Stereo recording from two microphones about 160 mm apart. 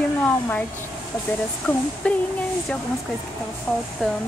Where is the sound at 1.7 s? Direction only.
10° left (ahead or behind).